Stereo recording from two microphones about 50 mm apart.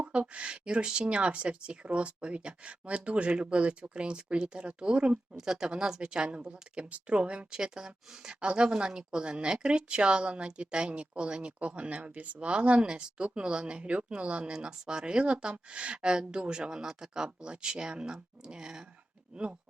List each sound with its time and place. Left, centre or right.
0.0 s speech: right